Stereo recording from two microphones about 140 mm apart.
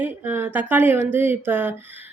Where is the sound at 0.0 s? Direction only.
15° right (ahead or behind).